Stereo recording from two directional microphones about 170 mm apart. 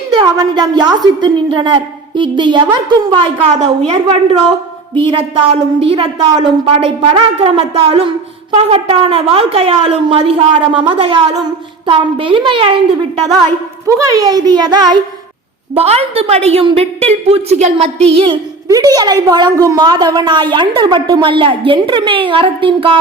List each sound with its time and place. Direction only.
0.1 s a woman's voice: 25° right (ahead or behind)
5.1 s a woman's voice: 35° right (ahead or behind)
13.8 s a woman's voice: 20° right (ahead or behind)
15.7 s a woman's voice: 35° right (ahead or behind)